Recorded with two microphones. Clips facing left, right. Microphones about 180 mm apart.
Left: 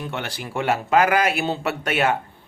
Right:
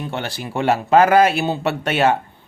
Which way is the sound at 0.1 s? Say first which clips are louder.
Right 3 dB; 30° right (ahead or behind).